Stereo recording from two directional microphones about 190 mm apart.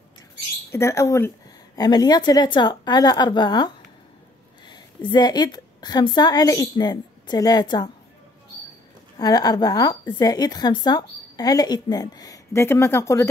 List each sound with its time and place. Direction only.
0.7 s a woman's voice: 15° left (ahead or behind)
9.1 s a woman's voice: 20° left (ahead or behind)